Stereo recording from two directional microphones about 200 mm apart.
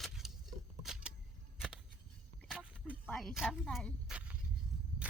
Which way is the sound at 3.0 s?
Centre (ahead or behind).